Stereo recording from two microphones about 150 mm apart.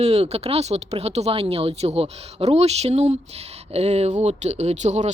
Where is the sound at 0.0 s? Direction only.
45° right (ahead or behind).